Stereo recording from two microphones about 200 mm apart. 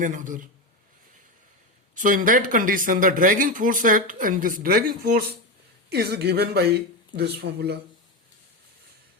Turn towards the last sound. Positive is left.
turn(degrees=-55)  # may be behind; listen again after turning